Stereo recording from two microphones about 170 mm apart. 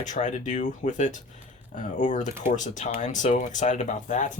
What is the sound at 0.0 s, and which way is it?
Speech, 45° left (ahead or behind).